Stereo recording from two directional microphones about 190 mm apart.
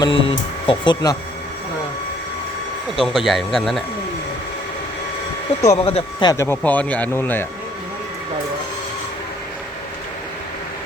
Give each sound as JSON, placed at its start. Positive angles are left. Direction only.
{"t": 0.0, "sound": "speech", "side_deg": 25}
{"t": 3.0, "sound": "speech", "side_deg": 0}
{"t": 5.7, "sound": "speech", "side_deg": 30}
{"t": 6.3, "sound": "speech", "side_deg": 15}